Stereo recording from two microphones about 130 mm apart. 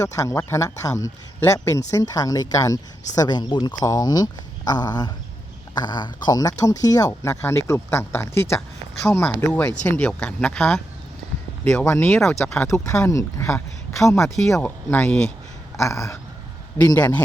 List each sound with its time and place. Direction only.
0.0 s speech: 25° left (ahead or behind); by 12.7 s 5° left (ahead or behind)
12.7 s speech: 25° left (ahead or behind); by 15.3 s 5° left (ahead or behind)
15.8 s speech: 25° left (ahead or behind)
17.0 s speech: 10° left (ahead or behind)